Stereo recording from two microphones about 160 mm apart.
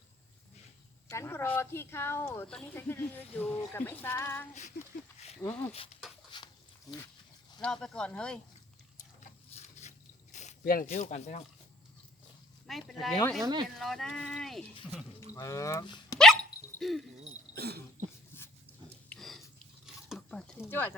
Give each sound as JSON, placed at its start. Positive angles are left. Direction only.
{"t": 1.1, "sound": "speech", "side_deg": 15}
{"t": 6.3, "sound": "a sound", "side_deg": 25}
{"t": 7.6, "sound": "speech", "side_deg": 5}
{"t": 9.5, "sound": "a sound", "side_deg": 40}
{"t": 10.6, "sound": "speech", "side_deg": 65}
{"t": 10.9, "sound": "speech", "side_deg": 50}
{"t": 12.6, "sound": "speech", "side_deg": 0}
{"t": 13.4, "sound": "speech", "side_deg": -25}
{"t": 13.7, "sound": "speech", "side_deg": 0}
{"t": 15.4, "sound": "speech", "side_deg": 20}
{"t": 16.1, "sound": "dog", "side_deg": 5}
{"t": 17.5, "sound": "cough", "side_deg": -85}
{"t": 18.3, "sound": "dog", "side_deg": 15}
{"t": 19.0, "sound": "a sound", "side_deg": 5}